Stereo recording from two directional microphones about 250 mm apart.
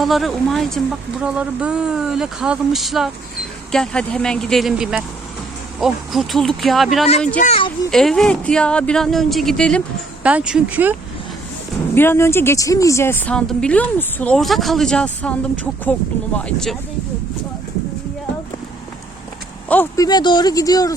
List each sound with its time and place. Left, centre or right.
0.0 s a woman's voice: centre
7.3 s speech: left
7.9 s a woman's voice: centre
11.9 s a woman's voice: centre
19.6 s speech: centre